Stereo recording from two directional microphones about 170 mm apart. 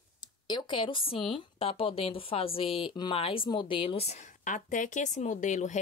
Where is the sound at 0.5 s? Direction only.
30° left (ahead or behind).